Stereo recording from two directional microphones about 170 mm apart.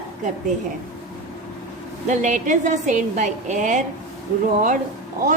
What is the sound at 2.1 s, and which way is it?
A woman's voice, 45° right (ahead or behind).